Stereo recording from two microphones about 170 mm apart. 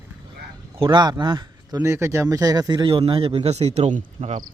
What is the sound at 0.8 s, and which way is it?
Speech, 25° right (ahead or behind).